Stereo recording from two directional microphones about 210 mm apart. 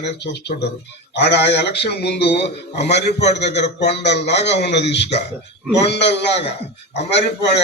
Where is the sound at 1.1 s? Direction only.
55° left (ahead or behind).